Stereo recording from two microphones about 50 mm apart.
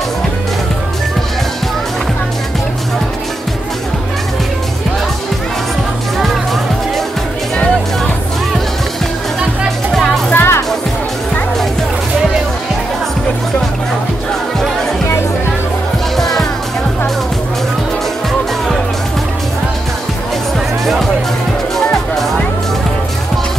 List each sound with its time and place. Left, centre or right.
6.1 s music: centre
9.9 s music: centre
10.3 s music: left
16.2 s music: centre
20.8 s music: centre